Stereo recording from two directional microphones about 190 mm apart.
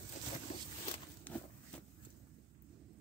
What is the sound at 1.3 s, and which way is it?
Walk, 10° left (ahead or behind).